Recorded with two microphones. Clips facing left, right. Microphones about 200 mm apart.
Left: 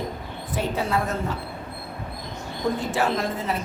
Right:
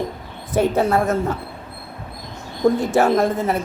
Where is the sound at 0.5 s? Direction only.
50° right (ahead or behind).